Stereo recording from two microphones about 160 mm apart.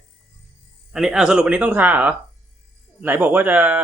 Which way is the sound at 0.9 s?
5° right (ahead or behind).